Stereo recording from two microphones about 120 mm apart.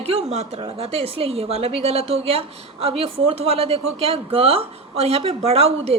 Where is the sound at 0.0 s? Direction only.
55° right (ahead or behind).